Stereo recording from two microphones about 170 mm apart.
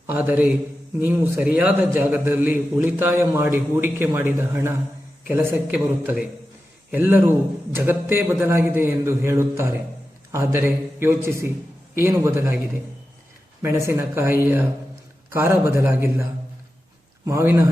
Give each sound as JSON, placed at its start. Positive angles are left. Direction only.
{"t": 0.1, "sound": "a man's voice", "side_deg": -10}
{"t": 13.6, "sound": "a man's voice", "side_deg": -15}
{"t": 17.2, "sound": "a man's voice", "side_deg": -15}